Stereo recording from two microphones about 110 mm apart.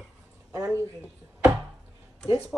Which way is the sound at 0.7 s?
25° right (ahead or behind).